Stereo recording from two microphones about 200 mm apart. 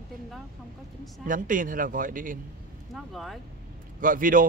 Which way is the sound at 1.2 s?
40° right (ahead or behind).